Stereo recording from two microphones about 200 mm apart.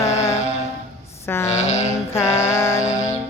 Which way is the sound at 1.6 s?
35° left (ahead or behind).